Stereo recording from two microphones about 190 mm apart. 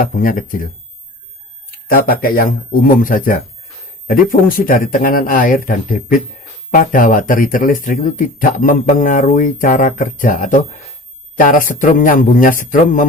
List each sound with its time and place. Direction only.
0.0 s speech: 45° left (ahead or behind)
1.9 s speech: 50° left (ahead or behind)